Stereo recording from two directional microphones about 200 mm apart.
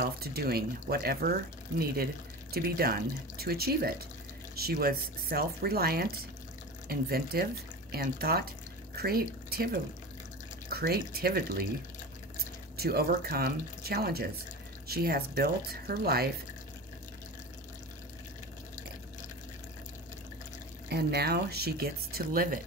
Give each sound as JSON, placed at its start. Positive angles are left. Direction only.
{"t": 0.0, "sound": "speech", "side_deg": -50}
{"t": 2.5, "sound": "speech", "side_deg": -50}
{"t": 12.7, "sound": "speech", "side_deg": -50}
{"t": 20.9, "sound": "speech", "side_deg": -55}